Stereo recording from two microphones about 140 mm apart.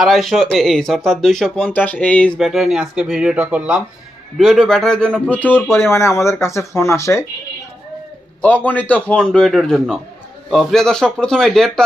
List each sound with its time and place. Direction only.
0.0 s speech: centre (ahead or behind)
2.4 s speech: centre (ahead or behind)
4.4 s speech: centre (ahead or behind); by 7.3 s 20° left (ahead or behind)
8.4 s speech: 10° left (ahead or behind)